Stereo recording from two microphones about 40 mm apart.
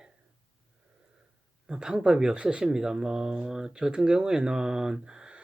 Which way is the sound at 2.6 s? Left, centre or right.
Centre.